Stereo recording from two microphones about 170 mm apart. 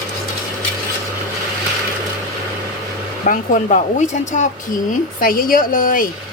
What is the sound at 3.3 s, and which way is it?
A woman's voice, 50° left (ahead or behind).